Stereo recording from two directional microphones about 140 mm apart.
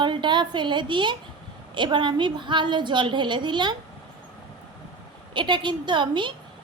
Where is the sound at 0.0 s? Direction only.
35° right (ahead or behind).